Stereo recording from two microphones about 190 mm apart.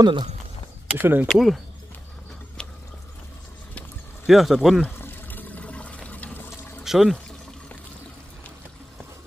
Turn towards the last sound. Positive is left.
turn(degrees=5)  # may be behind; listen again after turning